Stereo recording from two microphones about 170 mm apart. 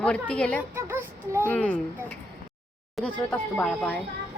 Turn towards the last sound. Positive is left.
turn(degrees=10)  # may be behind; listen again after turning